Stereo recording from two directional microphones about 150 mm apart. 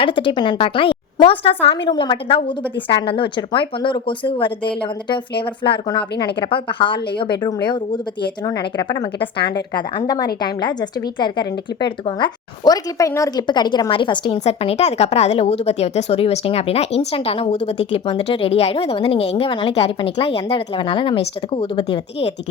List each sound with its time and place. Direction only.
0.0 s a woman's voice: 35° left (ahead or behind)
14.4 s a woman's voice: 45° left (ahead or behind)